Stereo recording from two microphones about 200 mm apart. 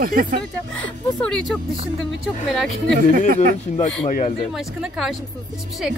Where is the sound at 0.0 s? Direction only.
45° right (ahead or behind).